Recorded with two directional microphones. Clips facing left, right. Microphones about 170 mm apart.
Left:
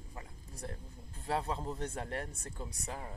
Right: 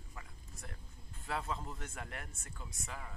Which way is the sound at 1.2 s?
30° left (ahead or behind).